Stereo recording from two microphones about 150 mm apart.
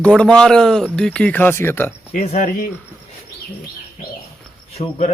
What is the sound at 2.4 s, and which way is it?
Speech, 65° left (ahead or behind).